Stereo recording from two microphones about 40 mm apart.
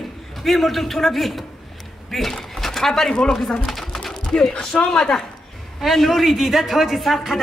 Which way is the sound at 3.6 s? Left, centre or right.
Centre.